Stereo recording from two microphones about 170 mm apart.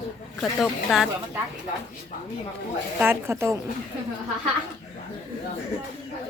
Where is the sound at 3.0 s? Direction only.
15° right (ahead or behind).